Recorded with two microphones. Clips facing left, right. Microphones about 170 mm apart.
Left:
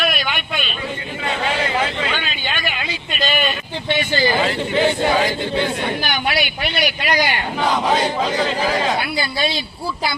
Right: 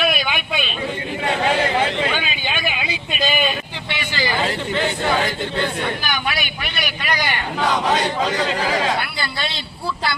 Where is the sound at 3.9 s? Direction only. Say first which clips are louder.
Left 4 dB; 20° left (ahead or behind).